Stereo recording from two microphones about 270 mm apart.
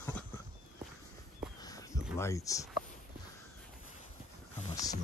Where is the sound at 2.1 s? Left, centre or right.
Centre.